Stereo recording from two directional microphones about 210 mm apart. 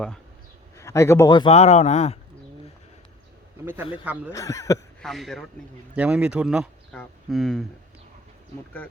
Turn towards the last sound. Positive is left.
turn(degrees=0)  # may be behind; listen again after turning